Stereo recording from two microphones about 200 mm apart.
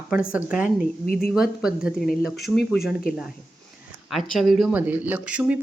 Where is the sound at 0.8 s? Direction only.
45° left (ahead or behind).